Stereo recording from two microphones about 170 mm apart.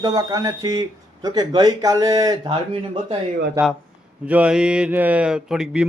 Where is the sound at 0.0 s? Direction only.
20° right (ahead or behind).